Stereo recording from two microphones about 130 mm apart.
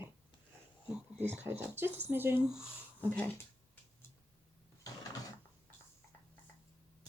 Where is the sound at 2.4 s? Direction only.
5° right (ahead or behind).